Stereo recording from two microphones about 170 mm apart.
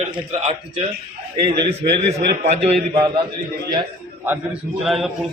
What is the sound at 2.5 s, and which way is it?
Speech, 40° right (ahead or behind).